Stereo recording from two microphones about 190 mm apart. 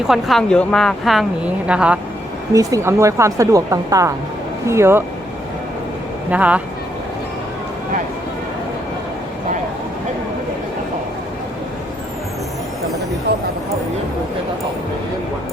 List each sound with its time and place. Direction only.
0.1 s speech: centre (ahead or behind)
2.5 s a woman's voice: 20° right (ahead or behind)
6.3 s a woman's voice: 5° right (ahead or behind)